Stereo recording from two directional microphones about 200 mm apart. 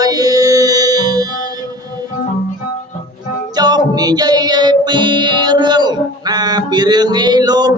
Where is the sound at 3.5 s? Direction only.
20° right (ahead or behind).